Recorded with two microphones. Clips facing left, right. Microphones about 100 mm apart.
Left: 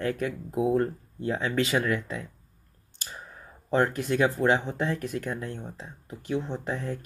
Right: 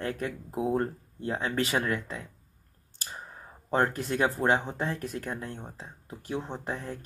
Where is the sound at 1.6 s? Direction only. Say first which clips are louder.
Left 3 dB; 45° right (ahead or behind).